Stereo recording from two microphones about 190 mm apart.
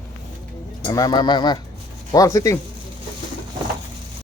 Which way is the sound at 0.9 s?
20° left (ahead or behind).